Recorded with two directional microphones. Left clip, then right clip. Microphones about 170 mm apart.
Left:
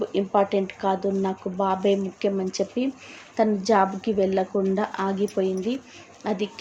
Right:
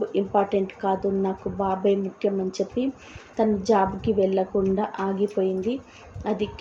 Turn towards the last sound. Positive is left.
turn(degrees=10)  # may be behind; listen again after turning